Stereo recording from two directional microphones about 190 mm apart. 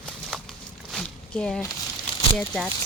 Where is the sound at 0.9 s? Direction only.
5° left (ahead or behind).